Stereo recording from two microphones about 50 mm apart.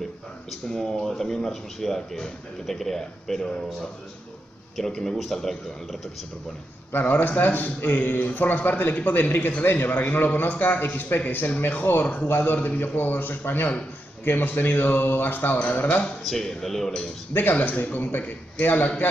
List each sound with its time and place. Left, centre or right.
0.5 s speech: centre
4.7 s speech: centre
6.9 s a man's voice: left
12.3 s a man's voice: left
16.3 s speech: centre
17.3 s a man's voice: left